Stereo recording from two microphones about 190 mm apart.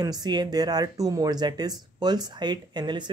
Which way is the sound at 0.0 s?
20° right (ahead or behind).